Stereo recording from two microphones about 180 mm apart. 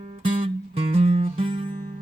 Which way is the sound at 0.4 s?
35° right (ahead or behind).